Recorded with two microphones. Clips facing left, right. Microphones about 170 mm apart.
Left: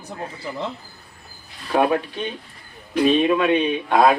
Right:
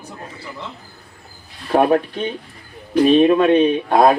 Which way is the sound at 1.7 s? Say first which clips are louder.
Right 4 dB; 40° right (ahead or behind).